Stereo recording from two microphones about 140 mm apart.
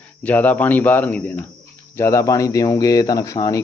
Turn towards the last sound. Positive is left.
turn(degrees=25)  # may be behind; listen again after turning